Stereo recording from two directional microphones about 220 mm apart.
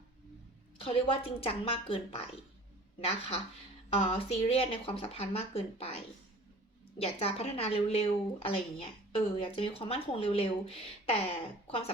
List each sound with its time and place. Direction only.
0.8 s speech: 25° left (ahead or behind)
7.0 s speech: 25° left (ahead or behind)